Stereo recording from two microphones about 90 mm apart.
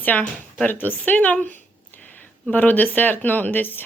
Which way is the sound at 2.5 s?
20° left (ahead or behind).